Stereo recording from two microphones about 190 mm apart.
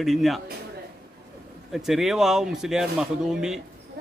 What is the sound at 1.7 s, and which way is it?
A man's voice, centre (ahead or behind).